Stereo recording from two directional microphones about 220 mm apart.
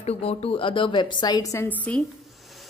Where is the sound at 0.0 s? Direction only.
25° left (ahead or behind).